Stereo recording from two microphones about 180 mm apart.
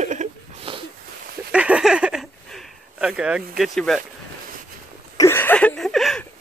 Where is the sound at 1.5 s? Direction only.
5° right (ahead or behind).